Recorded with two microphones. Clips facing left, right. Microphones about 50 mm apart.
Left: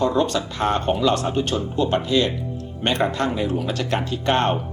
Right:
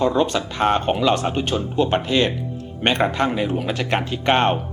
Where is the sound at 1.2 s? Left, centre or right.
Right.